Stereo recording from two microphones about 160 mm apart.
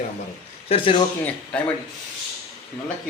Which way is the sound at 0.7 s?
35° left (ahead or behind).